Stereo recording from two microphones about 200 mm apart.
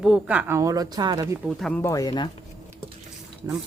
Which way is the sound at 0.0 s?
5° right (ahead or behind).